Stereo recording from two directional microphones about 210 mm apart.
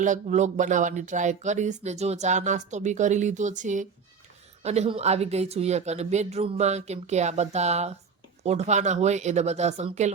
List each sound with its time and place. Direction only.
0.0 s speech: 35° right (ahead or behind)